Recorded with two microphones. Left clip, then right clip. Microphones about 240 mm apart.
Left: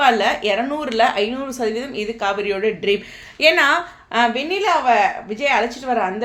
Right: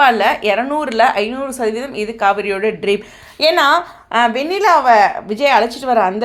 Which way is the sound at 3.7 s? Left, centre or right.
Centre.